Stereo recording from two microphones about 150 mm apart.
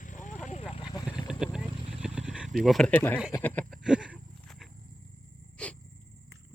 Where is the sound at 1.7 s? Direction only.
35° right (ahead or behind).